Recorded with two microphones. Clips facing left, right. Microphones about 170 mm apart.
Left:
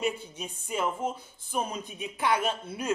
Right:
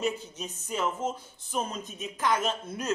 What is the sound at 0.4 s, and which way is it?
Speech, 10° left (ahead or behind).